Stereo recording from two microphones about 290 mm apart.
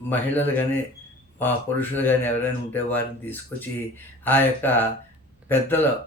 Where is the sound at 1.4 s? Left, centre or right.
Centre.